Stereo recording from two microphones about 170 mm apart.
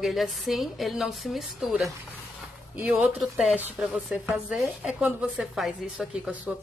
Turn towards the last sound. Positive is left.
turn(degrees=0)  # may be behind; listen again after turning